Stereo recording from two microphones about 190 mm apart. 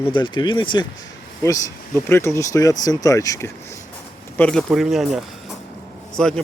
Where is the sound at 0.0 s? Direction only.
25° left (ahead or behind).